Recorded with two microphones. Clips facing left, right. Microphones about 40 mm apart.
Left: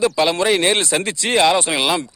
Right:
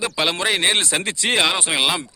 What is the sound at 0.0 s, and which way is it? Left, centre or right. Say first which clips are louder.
Speech: left 5 dB; centre.